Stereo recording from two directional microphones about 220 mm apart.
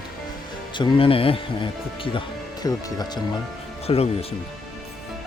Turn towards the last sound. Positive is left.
turn(degrees=25)  # may be behind; listen again after turning